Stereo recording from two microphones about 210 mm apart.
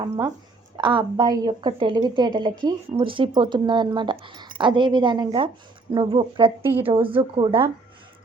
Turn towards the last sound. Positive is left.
turn(degrees=-25)  # may be behind; listen again after turning